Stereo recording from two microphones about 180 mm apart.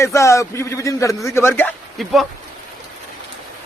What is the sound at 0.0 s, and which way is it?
A man's voice, 15° left (ahead or behind).